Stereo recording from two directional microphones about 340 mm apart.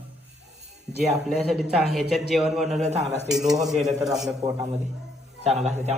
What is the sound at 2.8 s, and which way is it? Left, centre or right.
Speech, centre.